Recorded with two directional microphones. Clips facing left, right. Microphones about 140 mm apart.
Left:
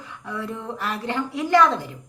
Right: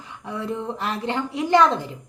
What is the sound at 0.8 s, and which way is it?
Speech, 20° right (ahead or behind).